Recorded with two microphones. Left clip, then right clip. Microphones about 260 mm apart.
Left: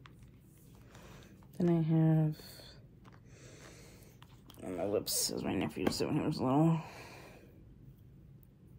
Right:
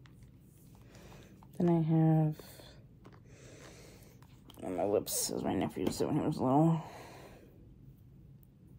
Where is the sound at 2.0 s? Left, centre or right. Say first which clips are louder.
Right 2 dB; centre.